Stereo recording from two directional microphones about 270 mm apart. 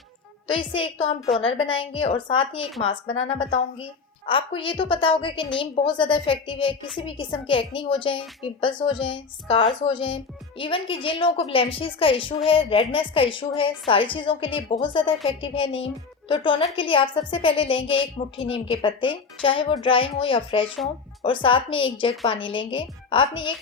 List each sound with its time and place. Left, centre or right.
0.4 s a woman's voice: centre